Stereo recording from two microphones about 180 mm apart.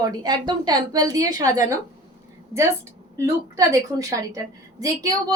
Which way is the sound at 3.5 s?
20° right (ahead or behind).